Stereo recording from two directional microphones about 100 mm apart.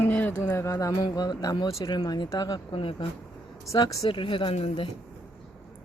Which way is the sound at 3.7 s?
45° left (ahead or behind).